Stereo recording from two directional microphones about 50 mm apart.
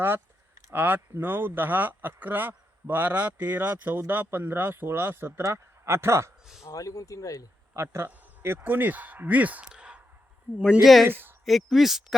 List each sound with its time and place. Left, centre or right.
0.7 s speech: right
5.4 s speech: right
6.7 s speech: left
7.7 s speech: right
8.4 s speech: right
8.6 s speech: right
9.6 s a sound: centre
10.5 s speech: right
11.0 s a woman's voice: right
11.4 s speech: centre